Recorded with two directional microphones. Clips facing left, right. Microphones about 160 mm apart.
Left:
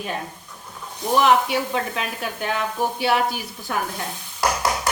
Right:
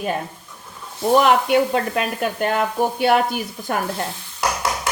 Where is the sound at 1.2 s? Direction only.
55° right (ahead or behind).